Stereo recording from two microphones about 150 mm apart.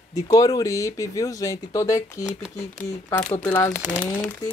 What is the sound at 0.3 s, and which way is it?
Speech, 25° left (ahead or behind).